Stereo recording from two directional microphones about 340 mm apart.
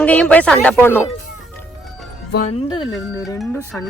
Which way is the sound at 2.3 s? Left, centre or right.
Left.